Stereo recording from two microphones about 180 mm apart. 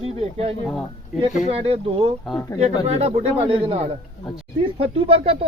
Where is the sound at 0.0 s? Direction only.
35° right (ahead or behind).